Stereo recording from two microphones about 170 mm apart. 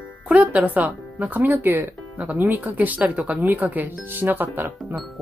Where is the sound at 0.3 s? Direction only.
10° right (ahead or behind).